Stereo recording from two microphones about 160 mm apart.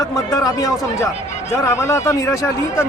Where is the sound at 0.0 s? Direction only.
20° left (ahead or behind).